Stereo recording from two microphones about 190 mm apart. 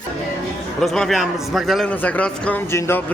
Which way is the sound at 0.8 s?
Centre (ahead or behind).